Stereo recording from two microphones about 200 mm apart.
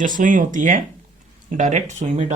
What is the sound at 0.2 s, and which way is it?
Speech, 40° right (ahead or behind).